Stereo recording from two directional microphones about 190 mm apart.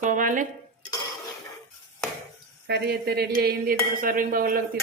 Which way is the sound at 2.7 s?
60° right (ahead or behind).